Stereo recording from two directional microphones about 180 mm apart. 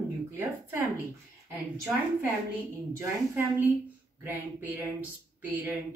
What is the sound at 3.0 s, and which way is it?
Speech, 10° right (ahead or behind).